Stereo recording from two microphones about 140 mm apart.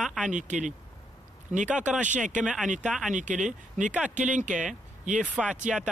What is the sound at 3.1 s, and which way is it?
Speech, 65° right (ahead or behind).